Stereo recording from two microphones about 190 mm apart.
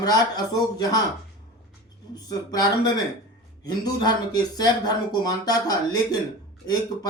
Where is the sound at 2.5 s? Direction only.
20° left (ahead or behind).